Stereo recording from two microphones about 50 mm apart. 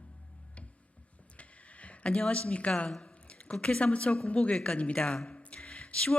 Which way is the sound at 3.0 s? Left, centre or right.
Left.